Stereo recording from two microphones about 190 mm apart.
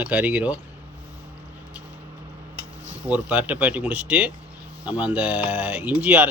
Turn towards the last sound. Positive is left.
turn(degrees=-5)  # may be behind; listen again after turning